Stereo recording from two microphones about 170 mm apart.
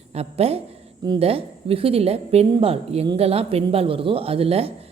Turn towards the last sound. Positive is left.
turn(degrees=-35)  # may be behind; listen again after turning